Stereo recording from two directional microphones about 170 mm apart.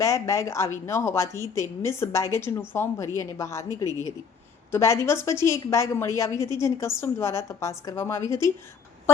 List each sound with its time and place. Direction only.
0.0 s a woman's voice: 15° left (ahead or behind)
4.7 s a woman's voice: 15° left (ahead or behind)